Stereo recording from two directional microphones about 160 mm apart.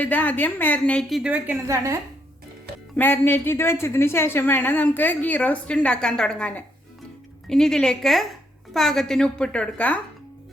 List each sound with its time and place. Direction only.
0.0 s a woman's voice: 10° left (ahead or behind)
1.2 s a woman's voice: 10° right (ahead or behind)
1.6 s a woman's voice: 20° right (ahead or behind)
2.9 s a woman's voice: 10° left (ahead or behind)